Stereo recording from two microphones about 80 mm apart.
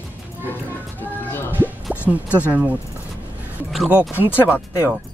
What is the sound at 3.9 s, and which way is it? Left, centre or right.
Speech, centre.